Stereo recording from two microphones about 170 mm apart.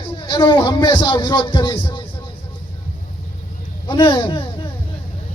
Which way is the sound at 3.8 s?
30° left (ahead or behind).